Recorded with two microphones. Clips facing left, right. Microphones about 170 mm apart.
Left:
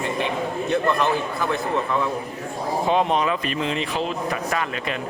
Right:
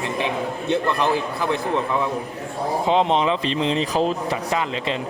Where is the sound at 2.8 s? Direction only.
20° right (ahead or behind); by 4.4 s 35° right (ahead or behind).